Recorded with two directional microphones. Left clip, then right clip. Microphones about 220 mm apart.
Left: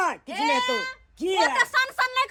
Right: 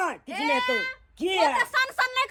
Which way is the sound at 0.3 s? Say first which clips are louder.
Right 1 dB; 50° left (ahead or behind).